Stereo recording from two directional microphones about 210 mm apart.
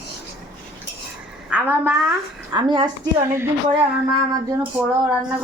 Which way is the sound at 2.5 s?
20° right (ahead or behind).